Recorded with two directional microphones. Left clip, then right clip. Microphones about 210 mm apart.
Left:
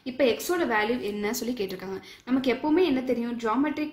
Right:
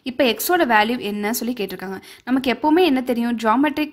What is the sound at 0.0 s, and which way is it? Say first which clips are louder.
A woman's voice: right 5 dB; 45° right (ahead or behind).